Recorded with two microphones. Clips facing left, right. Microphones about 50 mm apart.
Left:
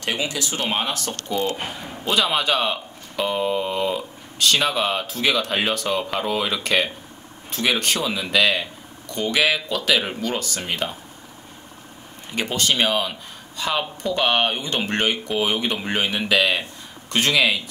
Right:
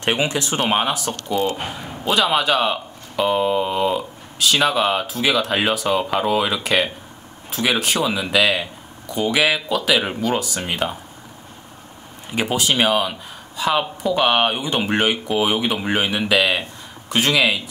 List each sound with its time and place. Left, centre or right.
0.0 s speech: right
0.6 s a man's voice: centre
12.3 s a man's voice: centre